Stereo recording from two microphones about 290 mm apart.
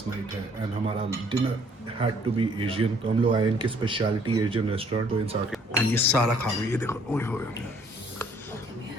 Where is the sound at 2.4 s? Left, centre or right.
Centre.